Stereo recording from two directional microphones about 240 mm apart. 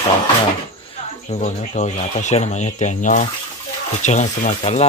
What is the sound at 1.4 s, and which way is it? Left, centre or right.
Speech, left.